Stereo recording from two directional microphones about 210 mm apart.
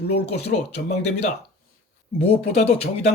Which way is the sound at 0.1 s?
50° left (ahead or behind).